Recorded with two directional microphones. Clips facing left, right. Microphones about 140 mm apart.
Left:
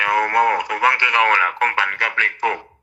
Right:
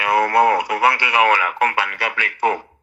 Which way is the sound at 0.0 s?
10° right (ahead or behind).